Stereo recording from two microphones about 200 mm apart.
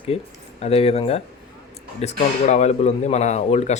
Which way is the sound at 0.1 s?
30° left (ahead or behind).